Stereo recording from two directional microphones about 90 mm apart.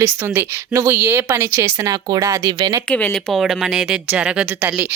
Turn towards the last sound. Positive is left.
turn(degrees=-20)  # may be behind; listen again after turning